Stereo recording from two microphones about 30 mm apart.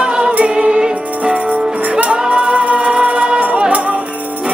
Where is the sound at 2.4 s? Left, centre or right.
Right.